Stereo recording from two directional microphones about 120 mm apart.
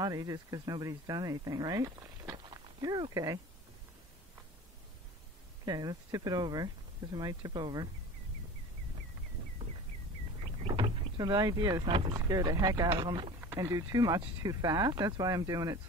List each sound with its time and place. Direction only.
0.0 s speech: 30° right (ahead or behind)
5.7 s speech: 30° right (ahead or behind)
10.7 s vehicle: 35° right (ahead or behind)
12.1 s speech: 35° right (ahead or behind)